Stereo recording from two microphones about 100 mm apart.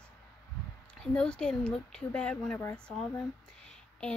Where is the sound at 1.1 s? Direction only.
10° left (ahead or behind).